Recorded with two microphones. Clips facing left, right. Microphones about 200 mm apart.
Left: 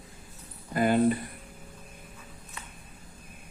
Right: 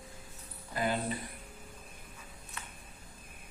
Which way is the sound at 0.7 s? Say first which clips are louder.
Left 8 dB; 55° left (ahead or behind).